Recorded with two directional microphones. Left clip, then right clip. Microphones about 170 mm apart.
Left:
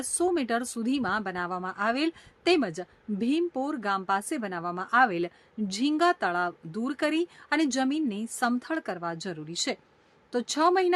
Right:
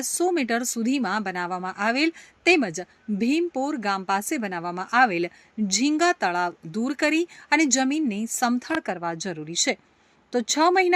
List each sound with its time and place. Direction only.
0.2 s a woman's voice: 15° right (ahead or behind)